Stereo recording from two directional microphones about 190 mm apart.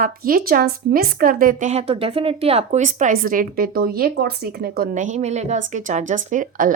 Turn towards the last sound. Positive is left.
turn(degrees=-45)  # may be behind; listen again after turning